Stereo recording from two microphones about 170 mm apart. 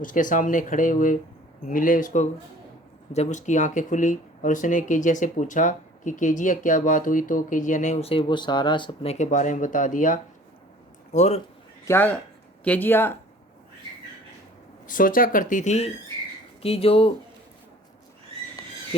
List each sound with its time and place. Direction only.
0.0 s speech: 50° left (ahead or behind); by 9.1 s 30° left (ahead or behind)
9.1 s a man's voice: 45° left (ahead or behind)
11.9 s speech: 10° left (ahead or behind)
14.8 s speech: 55° left (ahead or behind); by 17.1 s 35° left (ahead or behind)